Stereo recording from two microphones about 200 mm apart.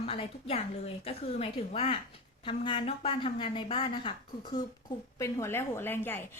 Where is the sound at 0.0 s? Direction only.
30° left (ahead or behind).